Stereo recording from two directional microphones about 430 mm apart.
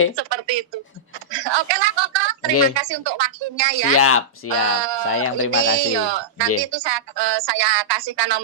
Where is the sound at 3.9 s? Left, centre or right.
Left.